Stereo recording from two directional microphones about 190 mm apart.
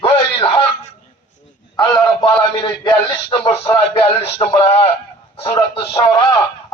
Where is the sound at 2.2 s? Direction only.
25° left (ahead or behind).